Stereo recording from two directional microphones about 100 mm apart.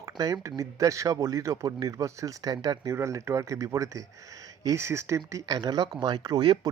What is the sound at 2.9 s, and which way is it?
Speech, 30° right (ahead or behind).